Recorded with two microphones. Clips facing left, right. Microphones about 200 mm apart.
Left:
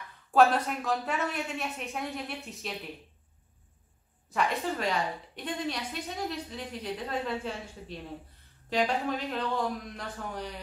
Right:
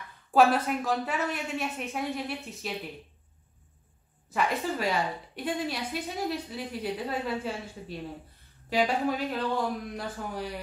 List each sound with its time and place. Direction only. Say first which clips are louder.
0.3 s a woman's voice: right 1 dB; 5° right (ahead or behind)
4.3 s a woman's voice: right 1 dB; 5° right (ahead or behind)
8.6 s speech: right 2 dB; 5° right (ahead or behind)